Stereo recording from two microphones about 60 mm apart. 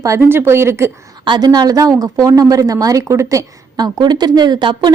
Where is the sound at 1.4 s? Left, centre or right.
Right.